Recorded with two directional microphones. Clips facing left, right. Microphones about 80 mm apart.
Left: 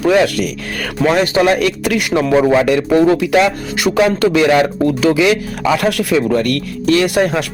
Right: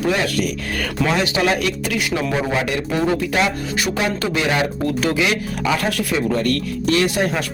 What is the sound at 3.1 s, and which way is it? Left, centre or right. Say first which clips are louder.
Speech: left 7 dB; left.